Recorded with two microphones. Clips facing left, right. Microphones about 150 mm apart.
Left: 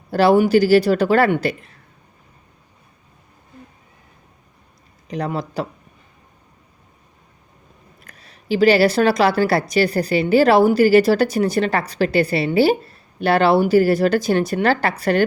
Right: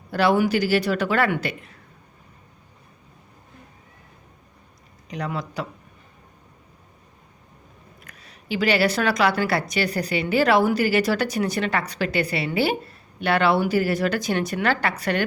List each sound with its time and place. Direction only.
0.1 s speech: 30° left (ahead or behind)
5.1 s speech: 35° left (ahead or behind)
8.0 s speech: 35° left (ahead or behind)